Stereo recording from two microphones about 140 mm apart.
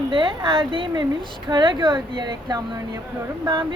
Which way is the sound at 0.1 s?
35° right (ahead or behind).